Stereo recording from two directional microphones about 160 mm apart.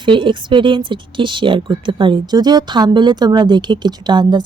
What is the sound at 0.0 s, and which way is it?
A woman's voice, 30° right (ahead or behind).